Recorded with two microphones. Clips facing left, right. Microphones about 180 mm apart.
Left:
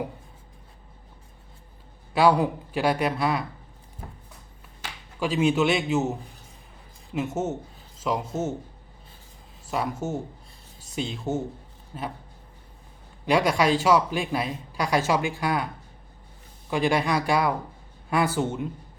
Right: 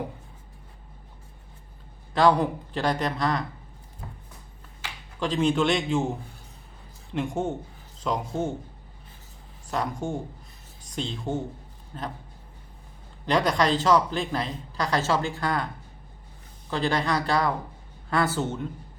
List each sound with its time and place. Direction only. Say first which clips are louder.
2.1 s speech: left 1 dB; 10° left (ahead or behind)
5.2 s speech: left 1 dB; 10° left (ahead or behind)
9.6 s speech: left 1 dB; 5° left (ahead or behind)
13.2 s speech: left 2 dB; 10° left (ahead or behind)